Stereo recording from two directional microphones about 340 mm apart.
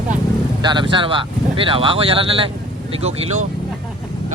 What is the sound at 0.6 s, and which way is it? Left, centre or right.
Speech, centre.